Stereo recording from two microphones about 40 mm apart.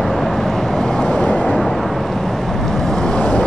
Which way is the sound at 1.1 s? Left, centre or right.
Left.